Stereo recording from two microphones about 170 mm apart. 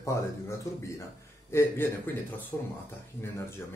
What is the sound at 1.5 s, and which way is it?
Speech, 15° left (ahead or behind).